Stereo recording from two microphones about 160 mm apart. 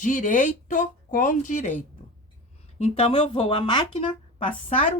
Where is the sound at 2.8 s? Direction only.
40° left (ahead or behind).